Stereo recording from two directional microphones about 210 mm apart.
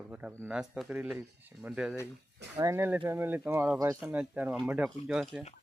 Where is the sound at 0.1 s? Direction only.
5° right (ahead or behind).